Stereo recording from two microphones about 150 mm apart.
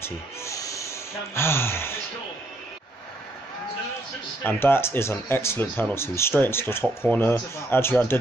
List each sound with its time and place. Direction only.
0.0 s music: 20° left (ahead or behind)
4.4 s speech: 15° left (ahead or behind)